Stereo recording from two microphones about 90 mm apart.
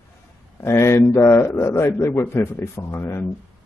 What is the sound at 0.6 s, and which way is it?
Speech, 30° left (ahead or behind).